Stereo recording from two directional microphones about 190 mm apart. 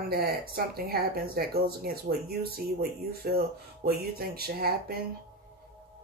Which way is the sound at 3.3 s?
55° right (ahead or behind).